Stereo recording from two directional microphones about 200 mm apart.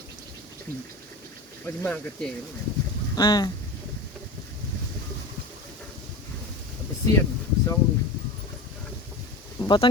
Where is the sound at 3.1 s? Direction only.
20° left (ahead or behind).